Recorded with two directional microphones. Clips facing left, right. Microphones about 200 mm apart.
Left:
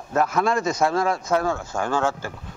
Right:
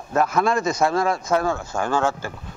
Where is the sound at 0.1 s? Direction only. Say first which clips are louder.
Right 1 dB; 20° right (ahead or behind).